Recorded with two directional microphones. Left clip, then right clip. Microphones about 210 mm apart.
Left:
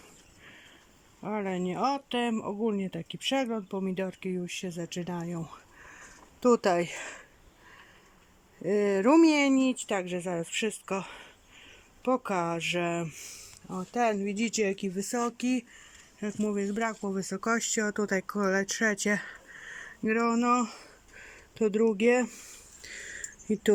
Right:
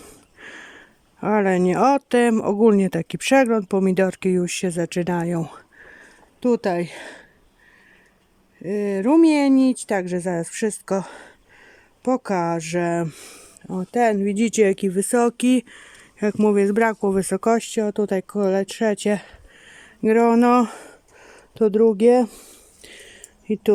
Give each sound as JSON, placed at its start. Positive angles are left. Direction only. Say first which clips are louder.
{"t": 1.2, "sound": "speech", "louder": "right 14 dB", "side_deg": -50}
{"t": 6.4, "sound": "speech", "louder": "right 3 dB", "side_deg": -15}
{"t": 8.6, "sound": "speech", "louder": "right 3 dB", "side_deg": -15}
{"t": 16.4, "sound": "speech", "louder": "right 13 dB", "side_deg": -50}
{"t": 20.0, "sound": "speech", "louder": "right 12 dB", "side_deg": -35}
{"t": 21.2, "sound": "speech", "louder": "right 9 dB", "side_deg": -20}
{"t": 22.8, "sound": "a sound", "louder": "left 2 dB", "side_deg": -15}